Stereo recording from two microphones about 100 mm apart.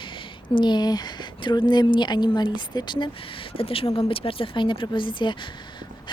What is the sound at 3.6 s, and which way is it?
A woman's voice, 70° left (ahead or behind).